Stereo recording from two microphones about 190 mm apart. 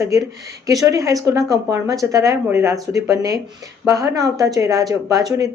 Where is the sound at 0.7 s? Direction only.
15° right (ahead or behind).